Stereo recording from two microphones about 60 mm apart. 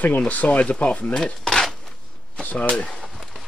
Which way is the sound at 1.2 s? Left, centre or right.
Centre.